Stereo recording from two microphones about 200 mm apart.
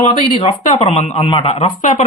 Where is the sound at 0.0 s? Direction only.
30° left (ahead or behind).